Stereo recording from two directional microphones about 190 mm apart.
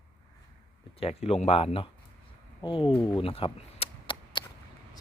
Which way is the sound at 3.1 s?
30° left (ahead or behind).